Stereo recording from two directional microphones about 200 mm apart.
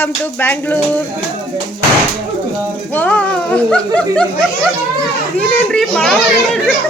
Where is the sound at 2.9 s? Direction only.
5° left (ahead or behind).